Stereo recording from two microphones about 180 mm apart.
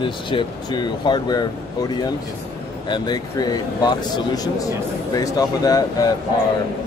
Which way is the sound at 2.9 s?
25° left (ahead or behind).